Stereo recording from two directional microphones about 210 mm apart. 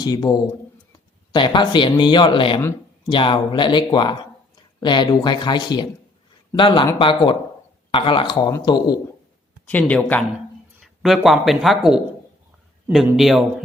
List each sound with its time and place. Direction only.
0.0 s speech: 20° left (ahead or behind)
9.6 s speech: 5° left (ahead or behind)